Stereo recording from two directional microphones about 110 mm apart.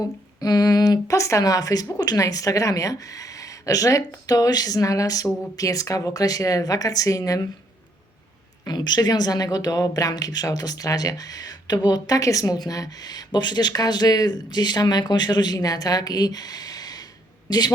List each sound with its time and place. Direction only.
0.3 s speech: 35° left (ahead or behind)
8.6 s speech: 40° left (ahead or behind)